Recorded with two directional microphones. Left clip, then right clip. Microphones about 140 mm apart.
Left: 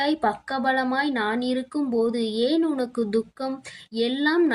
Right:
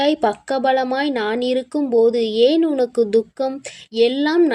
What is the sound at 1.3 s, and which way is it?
A woman's voice, 25° right (ahead or behind).